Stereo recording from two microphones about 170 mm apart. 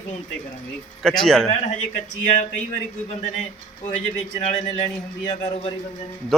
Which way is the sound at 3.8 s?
40° left (ahead or behind).